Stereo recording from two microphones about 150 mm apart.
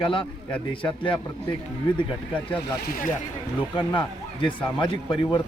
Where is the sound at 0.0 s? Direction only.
35° left (ahead or behind).